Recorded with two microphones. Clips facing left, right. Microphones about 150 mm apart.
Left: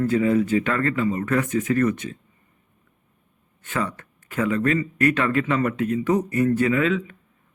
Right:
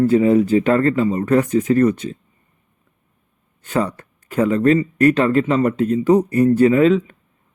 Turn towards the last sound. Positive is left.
turn(degrees=-35)  # may be behind; listen again after turning